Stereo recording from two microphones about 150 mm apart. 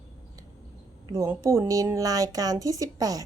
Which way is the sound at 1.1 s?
20° right (ahead or behind).